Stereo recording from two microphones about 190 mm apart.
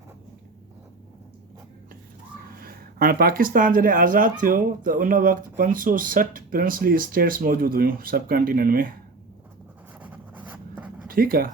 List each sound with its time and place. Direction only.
2.6 s speech: 50° right (ahead or behind)
10.0 s writing: 10° right (ahead or behind)
11.1 s speech: 50° right (ahead or behind)